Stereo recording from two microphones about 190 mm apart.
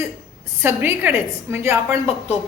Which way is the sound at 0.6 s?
10° right (ahead or behind).